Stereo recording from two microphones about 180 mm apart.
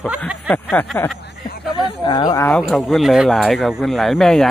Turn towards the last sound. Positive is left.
turn(degrees=0)  # may be behind; listen again after turning